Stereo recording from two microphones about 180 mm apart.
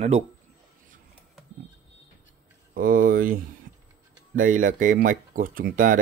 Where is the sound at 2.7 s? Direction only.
50° right (ahead or behind).